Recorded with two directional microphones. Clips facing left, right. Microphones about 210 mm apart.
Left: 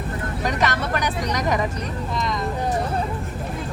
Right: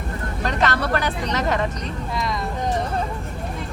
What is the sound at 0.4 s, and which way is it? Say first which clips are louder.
Speech: right 2 dB; 15° left (ahead or behind).